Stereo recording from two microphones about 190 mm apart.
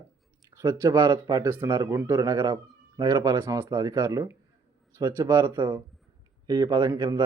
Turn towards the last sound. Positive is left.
turn(degrees=-20)  # may be behind; listen again after turning